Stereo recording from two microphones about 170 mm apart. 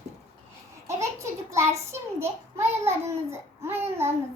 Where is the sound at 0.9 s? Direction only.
15° right (ahead or behind).